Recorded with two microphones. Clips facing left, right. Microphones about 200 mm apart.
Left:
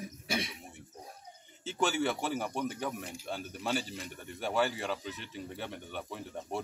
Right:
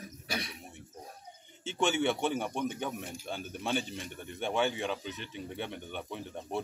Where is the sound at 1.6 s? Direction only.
Centre (ahead or behind).